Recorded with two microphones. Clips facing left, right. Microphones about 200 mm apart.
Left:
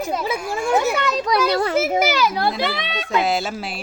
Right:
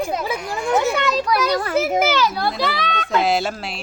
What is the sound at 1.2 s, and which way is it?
Speech, 25° left (ahead or behind).